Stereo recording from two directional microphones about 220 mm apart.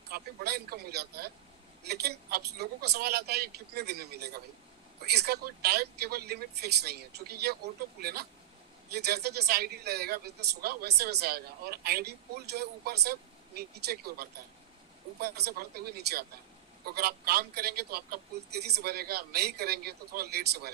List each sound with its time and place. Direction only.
0.1 s speech: 45° right (ahead or behind)